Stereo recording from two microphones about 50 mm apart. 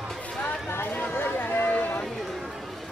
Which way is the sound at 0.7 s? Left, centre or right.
Left.